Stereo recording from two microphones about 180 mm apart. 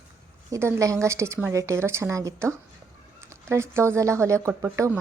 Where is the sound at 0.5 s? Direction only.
15° right (ahead or behind).